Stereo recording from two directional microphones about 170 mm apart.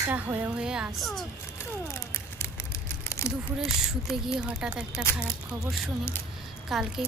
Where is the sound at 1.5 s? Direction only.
15° left (ahead or behind).